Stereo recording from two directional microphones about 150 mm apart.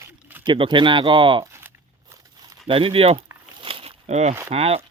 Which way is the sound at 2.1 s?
25° right (ahead or behind).